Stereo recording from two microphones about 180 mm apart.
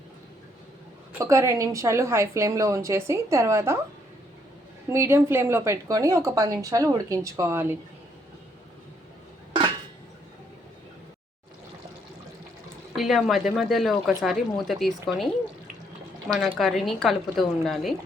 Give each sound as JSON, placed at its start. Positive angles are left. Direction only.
{"t": 1.2, "sound": "speech", "side_deg": -15}
{"t": 4.9, "sound": "speech", "side_deg": -15}
{"t": 13.0, "sound": "speech", "side_deg": 0}
{"t": 16.4, "sound": "speech", "side_deg": 0}